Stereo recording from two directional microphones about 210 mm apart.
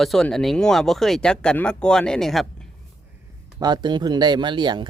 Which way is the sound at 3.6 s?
20° right (ahead or behind).